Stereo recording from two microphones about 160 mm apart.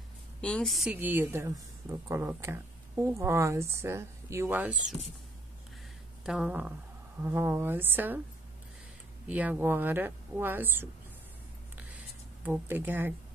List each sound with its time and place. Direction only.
0.4 s a woman's voice: 5° left (ahead or behind)
0.9 s speech: 10° right (ahead or behind)
6.2 s a woman's voice: 5° right (ahead or behind)
9.3 s speech: 10° right (ahead or behind)
12.4 s speech: 10° right (ahead or behind)